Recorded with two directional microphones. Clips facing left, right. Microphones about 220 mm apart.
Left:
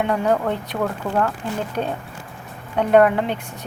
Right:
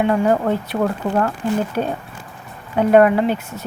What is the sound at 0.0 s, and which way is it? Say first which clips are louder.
Speech: right 3 dB; 5° right (ahead or behind).